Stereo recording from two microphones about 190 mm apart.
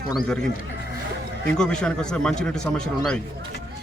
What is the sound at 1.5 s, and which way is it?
A man's voice, 5° left (ahead or behind).